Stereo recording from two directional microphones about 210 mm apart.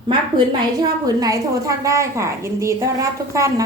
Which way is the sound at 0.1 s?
20° right (ahead or behind).